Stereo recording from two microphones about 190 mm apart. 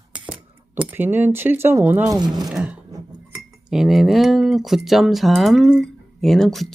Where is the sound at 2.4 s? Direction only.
5° right (ahead or behind).